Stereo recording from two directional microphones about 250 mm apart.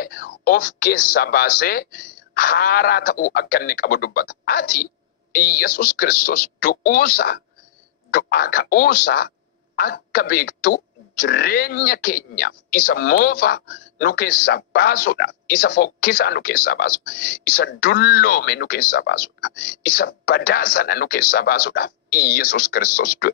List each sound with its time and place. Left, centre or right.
0.0 s speech: left